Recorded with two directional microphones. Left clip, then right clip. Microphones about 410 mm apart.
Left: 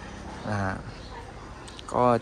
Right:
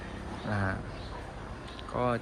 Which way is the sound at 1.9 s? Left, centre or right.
Centre.